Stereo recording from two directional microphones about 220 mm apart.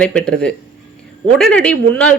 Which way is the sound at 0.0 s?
5° left (ahead or behind).